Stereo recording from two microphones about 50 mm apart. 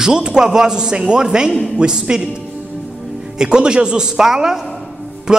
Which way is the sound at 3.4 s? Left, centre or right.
Centre.